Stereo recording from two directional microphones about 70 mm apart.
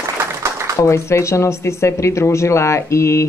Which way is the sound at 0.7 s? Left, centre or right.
Left.